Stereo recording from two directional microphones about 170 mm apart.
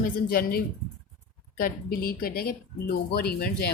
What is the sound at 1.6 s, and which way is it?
Speech, 60° left (ahead or behind).